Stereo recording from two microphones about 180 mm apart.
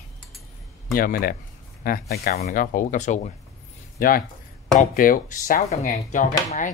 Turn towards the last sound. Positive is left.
turn(degrees=45)  # may be behind; listen again after turning